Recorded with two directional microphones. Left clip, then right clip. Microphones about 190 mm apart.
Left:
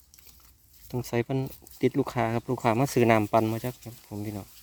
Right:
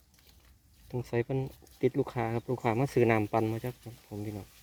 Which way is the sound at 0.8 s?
35° left (ahead or behind).